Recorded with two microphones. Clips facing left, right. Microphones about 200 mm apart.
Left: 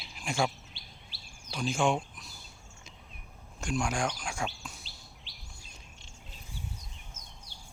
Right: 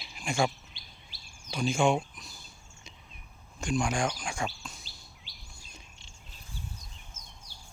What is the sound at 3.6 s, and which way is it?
Speech, 5° left (ahead or behind).